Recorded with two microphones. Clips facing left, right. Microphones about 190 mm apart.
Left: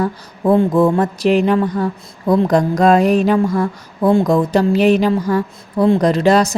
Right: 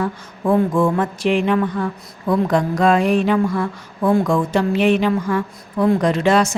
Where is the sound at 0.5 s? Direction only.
30° left (ahead or behind).